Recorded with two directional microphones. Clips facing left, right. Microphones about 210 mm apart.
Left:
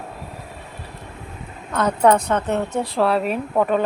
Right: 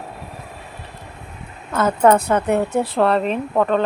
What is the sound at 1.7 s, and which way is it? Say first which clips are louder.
A woman's voice: right 2 dB; 5° right (ahead or behind).